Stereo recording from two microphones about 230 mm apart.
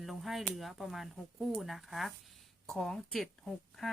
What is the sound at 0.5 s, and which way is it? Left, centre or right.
Speech, centre.